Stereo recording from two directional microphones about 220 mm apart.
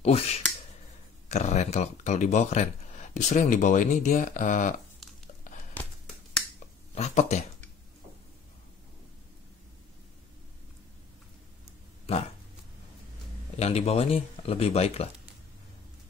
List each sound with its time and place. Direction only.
0.0 s speech: 30° left (ahead or behind)
5.8 s a sound: 10° left (ahead or behind)
7.0 s speech: 30° left (ahead or behind)
13.6 s speech: 30° left (ahead or behind)